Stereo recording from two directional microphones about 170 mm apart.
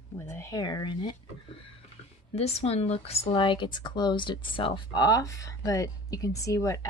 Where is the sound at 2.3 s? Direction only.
35° left (ahead or behind).